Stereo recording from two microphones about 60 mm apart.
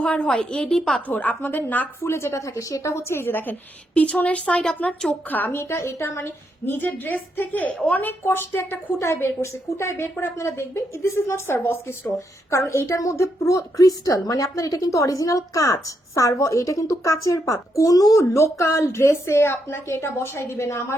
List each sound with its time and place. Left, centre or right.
0.0 s a woman's voice: centre
1.0 s speech: left
2.0 s a woman's voice: left
5.3 s a woman's voice: left
5.5 s a woman's voice: left
6.7 s a woman's voice: left
8.2 s a woman's voice: left
9.0 s a woman's voice: left
12.5 s a woman's voice: left